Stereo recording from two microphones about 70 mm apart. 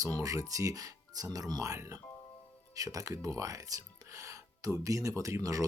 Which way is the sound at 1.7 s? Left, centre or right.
Right.